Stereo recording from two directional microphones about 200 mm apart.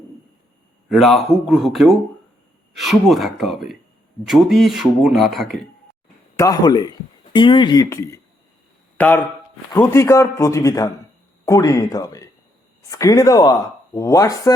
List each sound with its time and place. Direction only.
0.9 s speech: centre (ahead or behind)
6.3 s a man's voice: 15° left (ahead or behind)